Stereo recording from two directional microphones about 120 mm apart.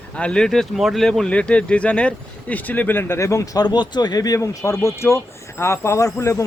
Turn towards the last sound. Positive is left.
turn(degrees=25)  # may be behind; listen again after turning